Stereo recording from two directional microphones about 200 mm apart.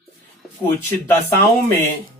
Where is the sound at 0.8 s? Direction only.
10° left (ahead or behind).